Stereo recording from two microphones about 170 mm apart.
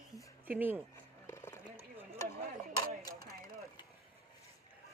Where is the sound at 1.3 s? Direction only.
15° left (ahead or behind).